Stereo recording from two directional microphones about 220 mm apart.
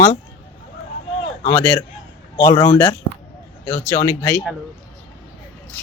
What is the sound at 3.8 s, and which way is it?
Speech, 15° left (ahead or behind).